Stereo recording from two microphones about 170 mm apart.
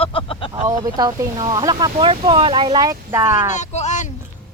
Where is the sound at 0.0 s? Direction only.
30° left (ahead or behind).